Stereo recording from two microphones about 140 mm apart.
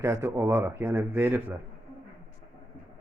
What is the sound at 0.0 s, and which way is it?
A man's voice, 20° right (ahead or behind).